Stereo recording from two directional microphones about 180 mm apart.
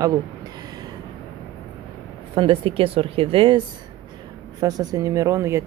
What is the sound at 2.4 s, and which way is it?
Speech, 30° right (ahead or behind).